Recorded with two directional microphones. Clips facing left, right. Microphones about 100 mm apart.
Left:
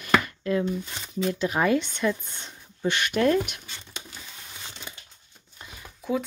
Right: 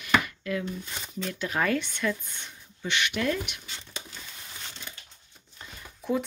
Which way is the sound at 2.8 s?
40° left (ahead or behind).